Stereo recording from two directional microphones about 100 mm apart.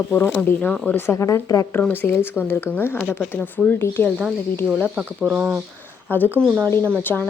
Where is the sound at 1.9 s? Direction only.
20° left (ahead or behind).